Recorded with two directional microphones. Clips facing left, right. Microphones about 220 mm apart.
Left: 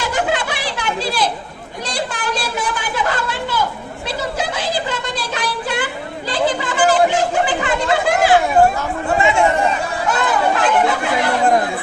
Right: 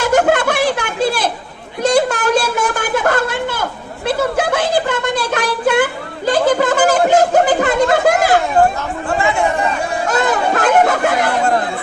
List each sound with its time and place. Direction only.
0.0 s a sound: 50° right (ahead or behind)
9.1 s chatter: 20° left (ahead or behind)
10.1 s children playing: 45° right (ahead or behind)